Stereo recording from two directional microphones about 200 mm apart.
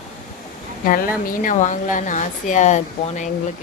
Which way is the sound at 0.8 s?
45° left (ahead or behind).